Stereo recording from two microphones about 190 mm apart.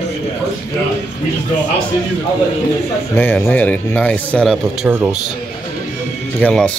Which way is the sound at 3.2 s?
10° left (ahead or behind).